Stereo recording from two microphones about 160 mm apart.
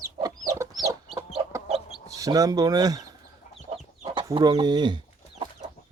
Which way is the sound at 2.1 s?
20° right (ahead or behind).